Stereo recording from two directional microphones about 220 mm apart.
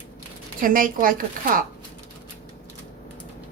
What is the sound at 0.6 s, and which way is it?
Speech, 40° right (ahead or behind).